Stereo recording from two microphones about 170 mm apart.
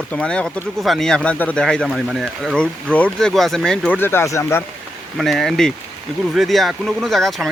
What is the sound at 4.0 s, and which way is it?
Speech, 15° left (ahead or behind).